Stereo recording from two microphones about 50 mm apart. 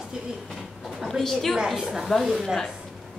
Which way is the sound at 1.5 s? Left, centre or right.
Centre.